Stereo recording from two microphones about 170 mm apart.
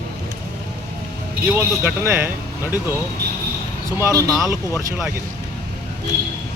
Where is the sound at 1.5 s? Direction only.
15° right (ahead or behind).